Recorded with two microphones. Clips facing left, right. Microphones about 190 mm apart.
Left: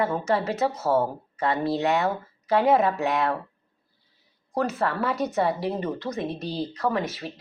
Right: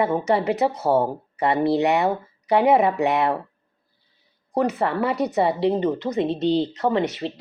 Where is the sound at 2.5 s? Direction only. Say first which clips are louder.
Right 3 dB; 20° right (ahead or behind).